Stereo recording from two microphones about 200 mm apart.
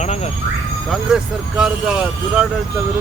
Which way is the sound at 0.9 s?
5° right (ahead or behind).